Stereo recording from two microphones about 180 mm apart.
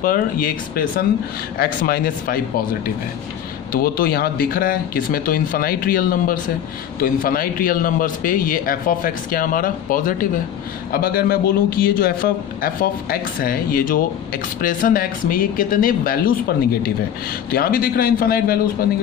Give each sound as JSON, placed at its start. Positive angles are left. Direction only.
{"t": 0.0, "sound": "a man's voice", "side_deg": 50}
{"t": 3.7, "sound": "a man's voice", "side_deg": 55}